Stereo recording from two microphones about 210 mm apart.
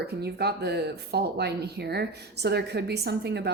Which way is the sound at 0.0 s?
50° right (ahead or behind).